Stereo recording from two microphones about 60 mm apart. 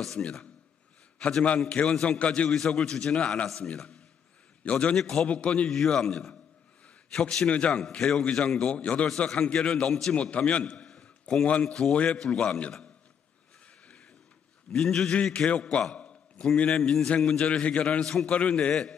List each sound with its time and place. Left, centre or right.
0.2 s a man's voice: centre
5.7 s a man's voice: centre
7.8 s a man's voice: centre
10.1 s a man's voice: centre
11.0 s a sound: centre
11.6 s a man's voice: centre
14.7 s a man's voice: centre
17.4 s a man's voice: centre
18.0 s a man's voice: centre
18.3 s a man's voice: centre